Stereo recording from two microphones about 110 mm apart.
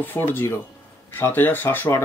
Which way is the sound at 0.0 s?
20° left (ahead or behind).